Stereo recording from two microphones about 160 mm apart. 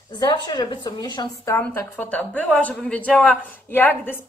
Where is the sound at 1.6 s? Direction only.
10° left (ahead or behind).